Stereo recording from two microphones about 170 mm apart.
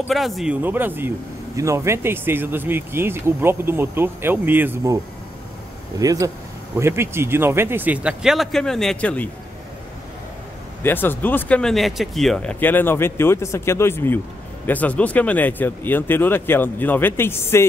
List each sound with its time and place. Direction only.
0.1 s speech: centre (ahead or behind)
10.8 s speech: 10° left (ahead or behind)